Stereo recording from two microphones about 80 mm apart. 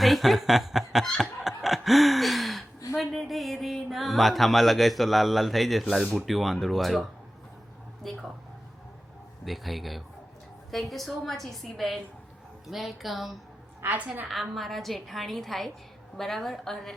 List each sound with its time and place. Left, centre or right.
0.0 s a woman's voice: centre
1.1 s snicker: centre
2.9 s a sound: centre
6.1 s a woman's voice: centre
9.4 s a woman's voice: centre
13.8 s a woman's voice: centre
14.5 s a woman's voice: centre